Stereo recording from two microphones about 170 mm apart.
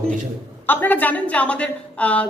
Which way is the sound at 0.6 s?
10° left (ahead or behind).